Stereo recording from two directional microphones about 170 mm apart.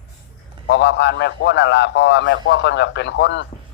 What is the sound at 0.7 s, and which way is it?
A man's voice, 90° left.